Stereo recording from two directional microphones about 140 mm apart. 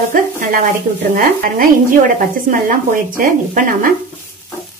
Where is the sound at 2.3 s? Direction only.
75° right (ahead or behind).